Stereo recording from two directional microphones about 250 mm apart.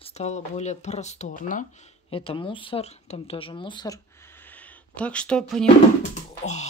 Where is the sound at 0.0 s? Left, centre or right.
Left; by 5.7 s centre.